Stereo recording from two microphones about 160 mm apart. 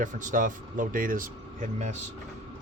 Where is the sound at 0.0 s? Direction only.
55° right (ahead or behind).